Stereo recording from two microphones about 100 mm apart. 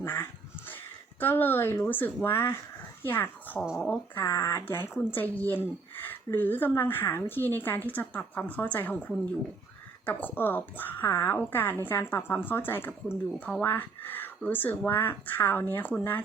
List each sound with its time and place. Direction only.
0.0 s speech: 20° left (ahead or behind)
10.1 s speech: 20° left (ahead or behind)